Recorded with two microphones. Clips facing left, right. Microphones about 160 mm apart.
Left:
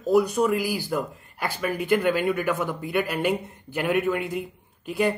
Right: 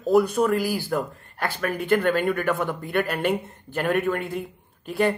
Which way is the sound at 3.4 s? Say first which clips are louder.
Right 1 dB; 50° right (ahead or behind).